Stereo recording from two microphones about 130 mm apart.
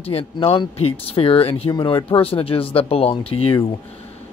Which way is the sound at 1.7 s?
35° left (ahead or behind).